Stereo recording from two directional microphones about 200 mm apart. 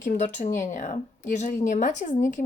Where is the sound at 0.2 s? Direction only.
35° left (ahead or behind).